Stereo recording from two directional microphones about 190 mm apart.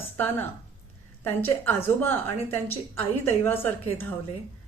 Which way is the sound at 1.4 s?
10° left (ahead or behind).